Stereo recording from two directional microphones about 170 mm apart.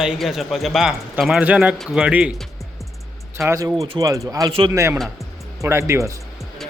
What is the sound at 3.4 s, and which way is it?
Speech, 15° right (ahead or behind).